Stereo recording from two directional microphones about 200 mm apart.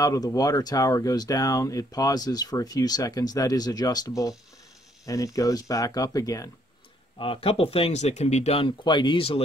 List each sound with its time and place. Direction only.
0.0 s speech: 15° left (ahead or behind)
7.2 s speech: 30° left (ahead or behind)